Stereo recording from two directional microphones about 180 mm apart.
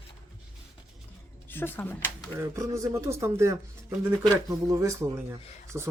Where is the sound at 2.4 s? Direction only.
15° right (ahead or behind).